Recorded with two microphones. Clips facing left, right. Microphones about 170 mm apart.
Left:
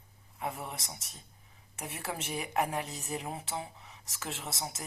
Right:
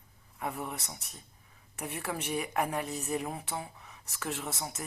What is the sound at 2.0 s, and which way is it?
A woman's voice, 30° left (ahead or behind).